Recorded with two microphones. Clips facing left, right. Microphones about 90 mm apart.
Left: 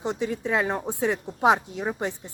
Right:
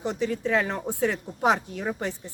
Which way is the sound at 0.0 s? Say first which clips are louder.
Right 1 dB; 20° left (ahead or behind).